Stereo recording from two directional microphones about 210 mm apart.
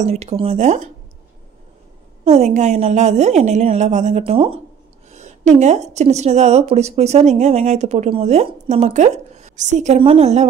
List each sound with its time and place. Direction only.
0.0 s a woman's voice: 30° right (ahead or behind)
2.2 s a woman's voice: 30° right (ahead or behind)